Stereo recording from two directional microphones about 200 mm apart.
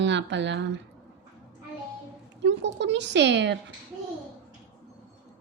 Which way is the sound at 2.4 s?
60° right (ahead or behind).